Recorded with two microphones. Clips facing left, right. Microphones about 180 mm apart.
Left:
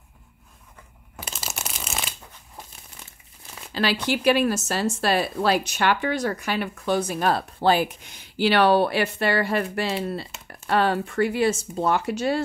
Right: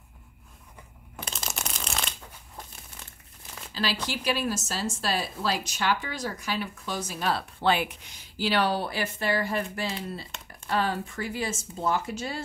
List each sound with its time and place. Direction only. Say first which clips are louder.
1.1 s shuffling cards: left 1 dB; 5° left (ahead or behind)
3.7 s speech: left 7 dB; 65° left (ahead or behind); by 7.9 s 40° left (ahead or behind)
8.1 s speech: left 6 dB; 65° left (ahead or behind)